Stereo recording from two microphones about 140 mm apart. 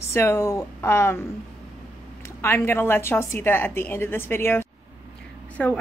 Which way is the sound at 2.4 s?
15° left (ahead or behind).